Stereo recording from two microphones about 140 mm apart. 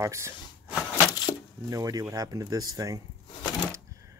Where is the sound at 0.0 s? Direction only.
20° right (ahead or behind).